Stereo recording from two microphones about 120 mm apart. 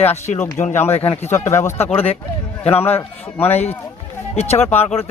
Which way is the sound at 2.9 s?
15° left (ahead or behind).